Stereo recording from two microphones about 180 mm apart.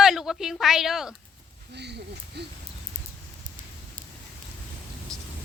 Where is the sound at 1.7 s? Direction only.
70° right (ahead or behind).